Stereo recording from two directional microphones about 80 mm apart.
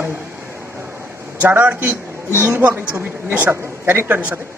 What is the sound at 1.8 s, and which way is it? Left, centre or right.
A woman's voice, right.